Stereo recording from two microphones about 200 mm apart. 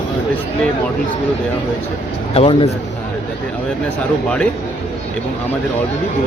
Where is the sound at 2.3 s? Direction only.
30° left (ahead or behind).